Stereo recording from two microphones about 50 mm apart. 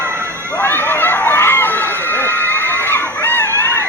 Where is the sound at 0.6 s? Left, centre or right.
Left.